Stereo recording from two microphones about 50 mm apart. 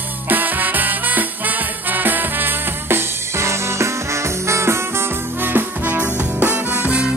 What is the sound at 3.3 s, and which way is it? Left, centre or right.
Music, right.